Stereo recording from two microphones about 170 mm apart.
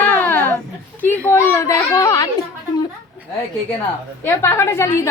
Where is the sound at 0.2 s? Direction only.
10° left (ahead or behind).